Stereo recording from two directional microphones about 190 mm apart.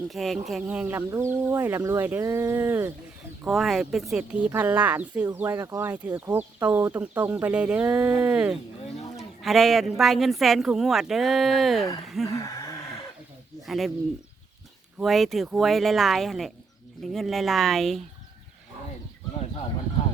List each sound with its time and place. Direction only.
0.1 s speech: centre (ahead or behind)
3.4 s speech: centre (ahead or behind)
12.4 s a sound: 15° left (ahead or behind)
13.7 s speech: centre (ahead or behind)
14.9 s speech: centre (ahead or behind)